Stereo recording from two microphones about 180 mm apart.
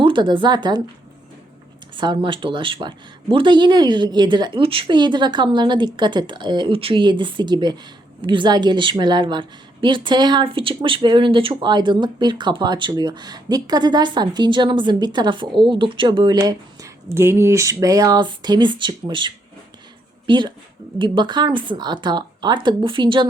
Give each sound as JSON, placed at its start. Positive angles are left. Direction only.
{"t": 0.0, "sound": "a woman's voice", "side_deg": -25}
{"t": 2.0, "sound": "a woman's voice", "side_deg": -25}